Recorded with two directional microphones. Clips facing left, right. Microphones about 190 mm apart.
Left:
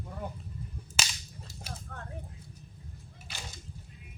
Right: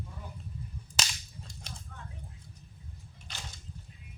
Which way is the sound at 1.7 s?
60° left (ahead or behind).